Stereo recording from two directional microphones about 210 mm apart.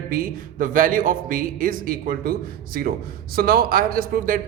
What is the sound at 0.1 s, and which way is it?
A man's voice, 40° right (ahead or behind).